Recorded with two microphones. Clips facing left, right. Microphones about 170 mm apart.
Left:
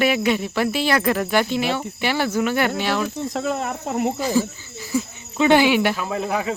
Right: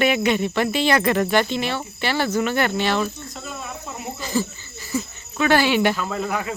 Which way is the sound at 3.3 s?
85° left.